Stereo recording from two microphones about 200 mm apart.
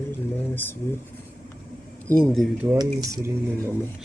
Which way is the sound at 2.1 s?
5° left (ahead or behind).